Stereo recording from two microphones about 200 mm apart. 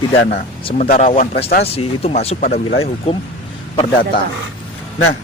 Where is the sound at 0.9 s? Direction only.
45° left (ahead or behind).